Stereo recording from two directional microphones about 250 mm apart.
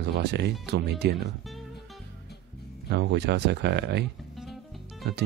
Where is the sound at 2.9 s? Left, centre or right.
Right.